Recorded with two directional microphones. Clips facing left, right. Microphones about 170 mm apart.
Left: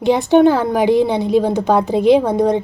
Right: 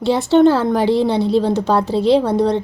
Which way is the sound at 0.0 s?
15° left (ahead or behind).